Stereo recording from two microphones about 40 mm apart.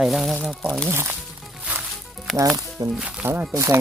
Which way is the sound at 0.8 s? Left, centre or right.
Right.